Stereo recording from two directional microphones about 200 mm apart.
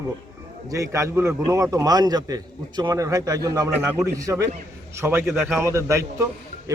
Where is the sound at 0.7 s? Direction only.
15° right (ahead or behind).